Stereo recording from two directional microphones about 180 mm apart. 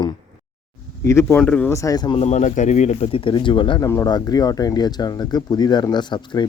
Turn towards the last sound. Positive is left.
turn(degrees=25)  # may be behind; listen again after turning